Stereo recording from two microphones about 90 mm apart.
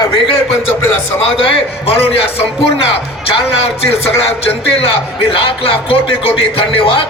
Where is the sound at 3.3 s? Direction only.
90° left.